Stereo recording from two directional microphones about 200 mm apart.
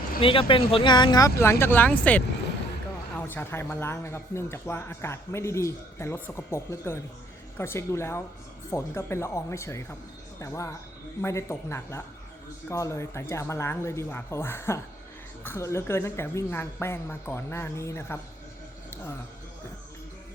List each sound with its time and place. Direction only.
0.2 s speech: 25° left (ahead or behind)